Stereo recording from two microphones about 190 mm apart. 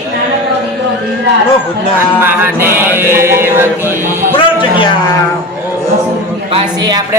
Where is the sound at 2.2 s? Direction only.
10° right (ahead or behind).